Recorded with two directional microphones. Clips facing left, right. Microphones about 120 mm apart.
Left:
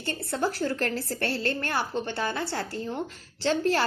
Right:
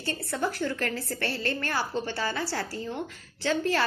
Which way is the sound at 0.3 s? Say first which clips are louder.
Left 2 dB; 30° left (ahead or behind).